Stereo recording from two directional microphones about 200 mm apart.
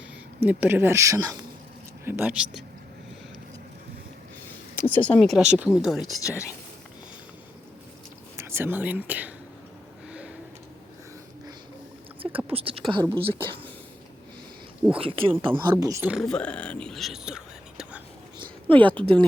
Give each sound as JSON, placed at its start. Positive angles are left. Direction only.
{"t": 0.3, "sound": "speech", "side_deg": -10}
{"t": 4.7, "sound": "speech", "side_deg": 10}
{"t": 6.2, "sound": "speech", "side_deg": 15}
{"t": 8.4, "sound": "speech", "side_deg": -10}
{"t": 10.1, "sound": "a sound", "side_deg": -5}
{"t": 12.5, "sound": "speech", "side_deg": -30}
{"t": 14.9, "sound": "speech", "side_deg": -25}
{"t": 18.7, "sound": "speech", "side_deg": 5}